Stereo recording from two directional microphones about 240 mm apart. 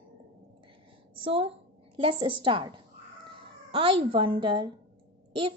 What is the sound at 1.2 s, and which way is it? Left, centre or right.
A woman's voice, right.